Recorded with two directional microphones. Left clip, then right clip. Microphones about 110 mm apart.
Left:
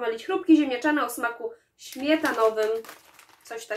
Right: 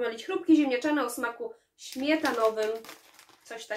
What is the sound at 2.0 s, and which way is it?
Speech, 10° right (ahead or behind).